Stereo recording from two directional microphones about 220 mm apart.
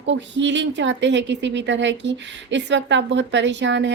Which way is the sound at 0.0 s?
55° right (ahead or behind).